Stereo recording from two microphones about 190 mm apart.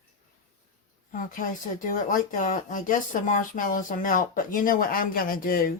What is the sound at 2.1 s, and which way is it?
Speech, 45° left (ahead or behind).